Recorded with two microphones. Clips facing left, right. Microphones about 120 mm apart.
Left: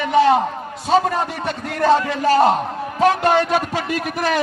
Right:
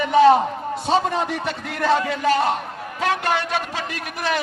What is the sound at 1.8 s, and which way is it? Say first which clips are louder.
A man's voice: left 4 dB; 40° left (ahead or behind).